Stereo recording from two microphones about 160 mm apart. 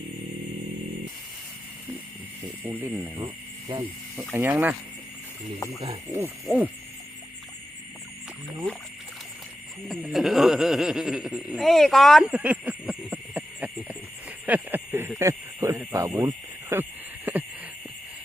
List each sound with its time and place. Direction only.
2.6 s speech: 10° right (ahead or behind)
3.2 s a sound: 25° right (ahead or behind)
4.4 s speech: 10° right (ahead or behind)
6.1 s speech: 15° right (ahead or behind)
8.7 s speech: 5° left (ahead or behind)
10.1 s speech: centre (ahead or behind)
17.3 s a sound: 10° right (ahead or behind)